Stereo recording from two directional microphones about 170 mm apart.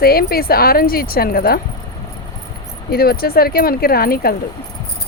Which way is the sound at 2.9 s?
65° left (ahead or behind).